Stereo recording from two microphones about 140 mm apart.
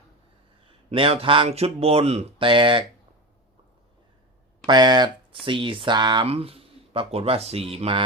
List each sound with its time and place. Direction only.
0.9 s speech: 45° right (ahead or behind)
4.6 s speech: 30° right (ahead or behind)
6.2 s speech: 45° right (ahead or behind)